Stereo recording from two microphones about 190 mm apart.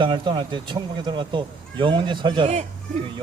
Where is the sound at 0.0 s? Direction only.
25° right (ahead or behind).